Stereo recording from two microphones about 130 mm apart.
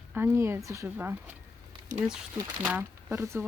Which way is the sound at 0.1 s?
20° right (ahead or behind).